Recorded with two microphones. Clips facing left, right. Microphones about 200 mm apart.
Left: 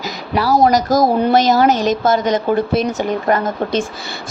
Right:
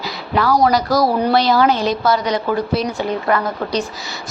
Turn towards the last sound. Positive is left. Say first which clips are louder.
# left 2 dB
turn(degrees=50)  # may be behind; listen again after turning